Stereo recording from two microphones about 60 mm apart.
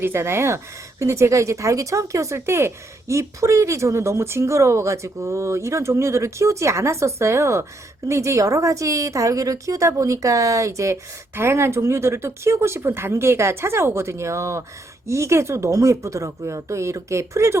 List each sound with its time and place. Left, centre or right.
0.0 s a woman's voice: right
11.3 s a woman's voice: right